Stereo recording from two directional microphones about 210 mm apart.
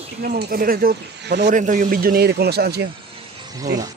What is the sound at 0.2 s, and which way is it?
A man's voice, 50° right (ahead or behind).